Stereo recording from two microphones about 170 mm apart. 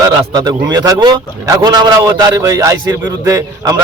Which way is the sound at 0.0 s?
25° right (ahead or behind).